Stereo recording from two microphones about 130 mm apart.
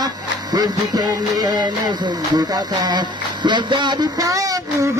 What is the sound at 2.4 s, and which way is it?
Speech, 30° right (ahead or behind).